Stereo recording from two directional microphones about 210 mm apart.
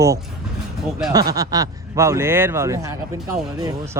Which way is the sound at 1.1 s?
15° right (ahead or behind).